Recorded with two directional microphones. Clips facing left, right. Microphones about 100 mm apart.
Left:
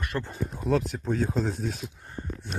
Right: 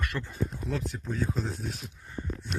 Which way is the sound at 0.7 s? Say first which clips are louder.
Left 8 dB; 90° left.